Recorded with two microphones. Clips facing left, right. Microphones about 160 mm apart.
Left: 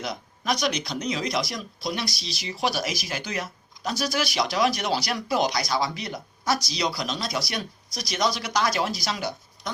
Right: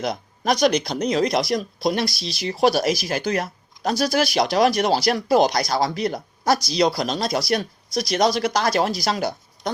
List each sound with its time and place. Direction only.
0.0 s speech: 40° right (ahead or behind)
0.9 s speech: 55° right (ahead or behind); by 3.1 s 35° right (ahead or behind)
3.1 s speech: 50° right (ahead or behind)
4.1 s speech: 45° right (ahead or behind)